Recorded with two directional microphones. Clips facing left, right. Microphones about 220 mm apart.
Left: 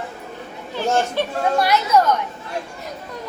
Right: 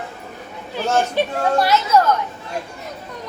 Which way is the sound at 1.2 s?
15° right (ahead or behind).